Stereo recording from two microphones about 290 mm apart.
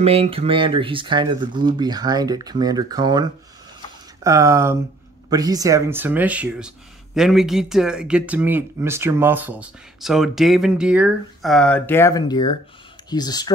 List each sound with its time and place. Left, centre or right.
0.0 s speech: centre